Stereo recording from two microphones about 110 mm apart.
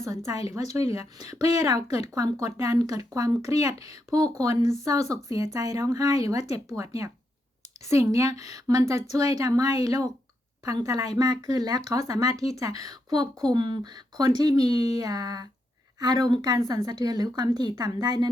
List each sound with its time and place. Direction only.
0.5 s a woman's voice: 30° right (ahead or behind)